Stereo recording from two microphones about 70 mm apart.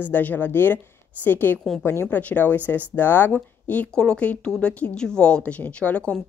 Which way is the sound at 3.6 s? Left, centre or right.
Centre.